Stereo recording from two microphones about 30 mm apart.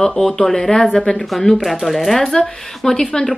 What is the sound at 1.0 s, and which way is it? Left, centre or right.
Speech, centre.